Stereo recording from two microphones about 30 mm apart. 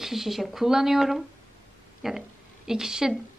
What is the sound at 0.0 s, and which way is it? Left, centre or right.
A woman's voice, centre.